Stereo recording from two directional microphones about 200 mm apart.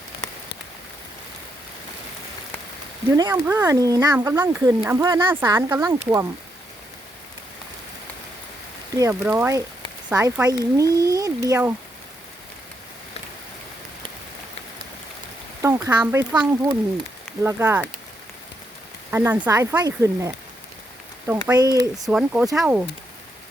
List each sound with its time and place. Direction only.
3.1 s speech: 15° right (ahead or behind)
9.0 s speech: 10° right (ahead or behind)
15.6 s speech: 15° right (ahead or behind)
19.1 s speech: 10° right (ahead or behind)
21.4 s speech: 20° right (ahead or behind)
22.1 s speech: 10° right (ahead or behind)